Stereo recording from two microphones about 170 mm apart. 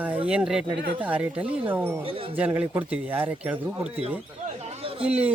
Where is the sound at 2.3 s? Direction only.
10° right (ahead or behind).